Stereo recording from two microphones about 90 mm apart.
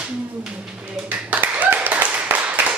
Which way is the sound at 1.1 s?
20° right (ahead or behind).